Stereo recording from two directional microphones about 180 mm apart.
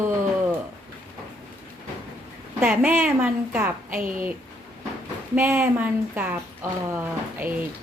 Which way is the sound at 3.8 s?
50° right (ahead or behind).